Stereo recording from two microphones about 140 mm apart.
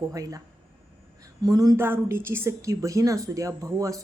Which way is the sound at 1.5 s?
25° right (ahead or behind).